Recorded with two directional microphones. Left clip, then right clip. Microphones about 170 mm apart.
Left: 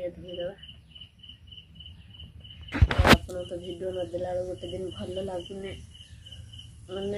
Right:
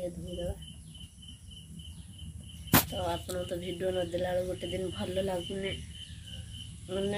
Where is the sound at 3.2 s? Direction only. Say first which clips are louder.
Even; 5° right (ahead or behind).